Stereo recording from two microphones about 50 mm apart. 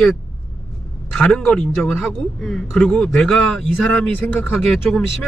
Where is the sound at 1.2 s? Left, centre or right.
Centre.